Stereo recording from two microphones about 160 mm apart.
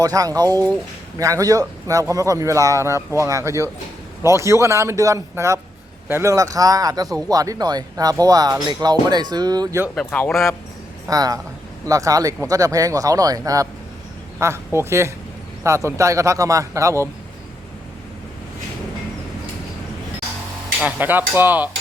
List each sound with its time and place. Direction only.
0.0 s a man's voice: 20° right (ahead or behind)
9.9 s speech: 5° left (ahead or behind)
11.1 s a man's voice: 20° right (ahead or behind)
20.8 s a man's voice: 10° right (ahead or behind)